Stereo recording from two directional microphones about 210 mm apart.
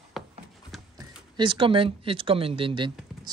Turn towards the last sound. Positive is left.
turn(degrees=-20)  # may be behind; listen again after turning